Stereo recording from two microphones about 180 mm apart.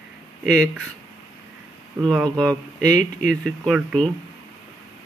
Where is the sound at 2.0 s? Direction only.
Centre (ahead or behind).